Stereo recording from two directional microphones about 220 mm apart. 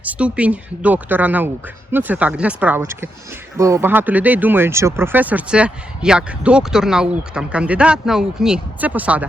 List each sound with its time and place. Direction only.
0.0 s speech: 5° right (ahead or behind)